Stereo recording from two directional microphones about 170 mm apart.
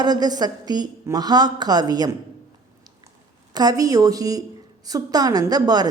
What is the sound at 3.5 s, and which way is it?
Speech, 20° right (ahead or behind).